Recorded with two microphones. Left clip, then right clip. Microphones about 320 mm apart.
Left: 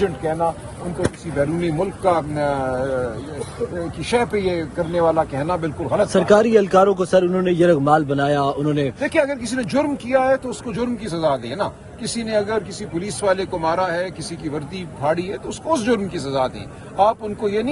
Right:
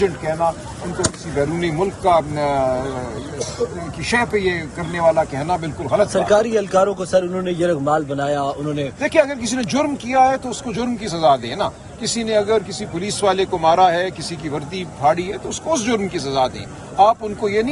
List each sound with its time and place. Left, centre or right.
1.0 s speech: centre
4.0 s speech: centre
6.1 s a man's voice: left
9.0 s speech: centre